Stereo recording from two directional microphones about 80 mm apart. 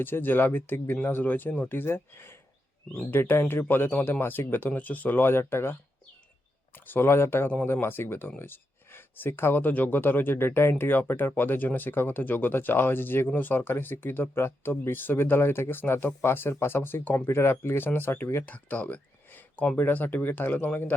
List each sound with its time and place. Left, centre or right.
0.0 s speech: left
6.7 s speech: left
18.4 s speech: centre